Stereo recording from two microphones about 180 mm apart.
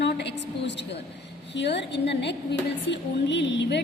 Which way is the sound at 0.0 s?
70° left (ahead or behind).